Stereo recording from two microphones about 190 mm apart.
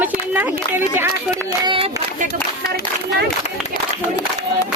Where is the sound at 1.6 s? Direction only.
30° right (ahead or behind).